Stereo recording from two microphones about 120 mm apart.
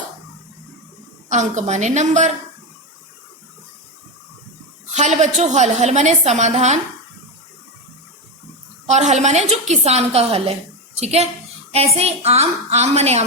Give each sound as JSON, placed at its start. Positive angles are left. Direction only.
{"t": 1.3, "sound": "a woman's voice", "side_deg": -85}
{"t": 4.9, "sound": "a woman's voice", "side_deg": -75}
{"t": 8.9, "sound": "a woman's voice", "side_deg": -75}